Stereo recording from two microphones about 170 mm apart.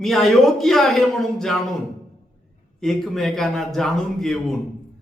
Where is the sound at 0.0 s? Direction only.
Centre (ahead or behind).